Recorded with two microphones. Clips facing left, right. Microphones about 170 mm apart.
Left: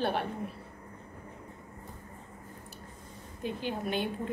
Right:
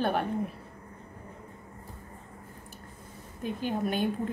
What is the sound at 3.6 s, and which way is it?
Speech, 45° right (ahead or behind).